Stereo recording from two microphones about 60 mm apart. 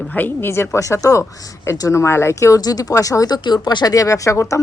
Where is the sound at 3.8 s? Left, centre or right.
Left.